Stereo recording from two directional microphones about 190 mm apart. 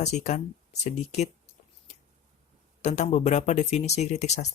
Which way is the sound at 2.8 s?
35° left (ahead or behind).